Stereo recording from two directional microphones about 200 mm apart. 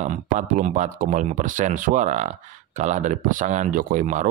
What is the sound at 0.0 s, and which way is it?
Speech, 35° right (ahead or behind).